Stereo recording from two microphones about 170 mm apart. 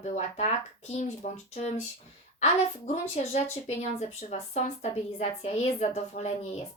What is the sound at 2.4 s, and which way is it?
Speech, 45° left (ahead or behind).